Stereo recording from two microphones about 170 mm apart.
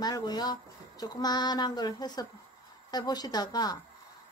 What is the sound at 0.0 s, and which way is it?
Speech, 25° left (ahead or behind).